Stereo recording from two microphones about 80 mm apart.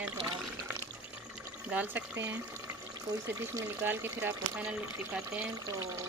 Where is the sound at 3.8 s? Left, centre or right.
Right.